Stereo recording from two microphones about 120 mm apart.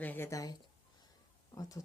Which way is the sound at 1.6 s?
30° left (ahead or behind).